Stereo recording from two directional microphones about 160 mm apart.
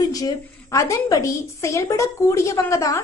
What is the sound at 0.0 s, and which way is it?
A woman's voice, 20° left (ahead or behind).